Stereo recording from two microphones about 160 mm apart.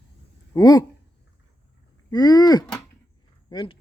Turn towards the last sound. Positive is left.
turn(degrees=30)  # may be behind; listen again after turning